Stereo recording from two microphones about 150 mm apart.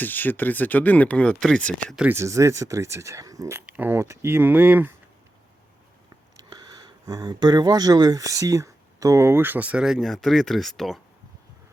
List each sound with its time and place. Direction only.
0.0 s speech: 10° left (ahead or behind)
2.0 s speech: 15° right (ahead or behind)
6.3 s speech: 25° right (ahead or behind); by 11.0 s centre (ahead or behind)